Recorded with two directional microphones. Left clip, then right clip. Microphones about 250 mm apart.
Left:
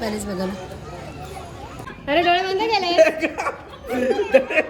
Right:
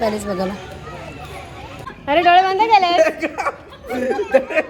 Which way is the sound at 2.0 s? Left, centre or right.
Centre.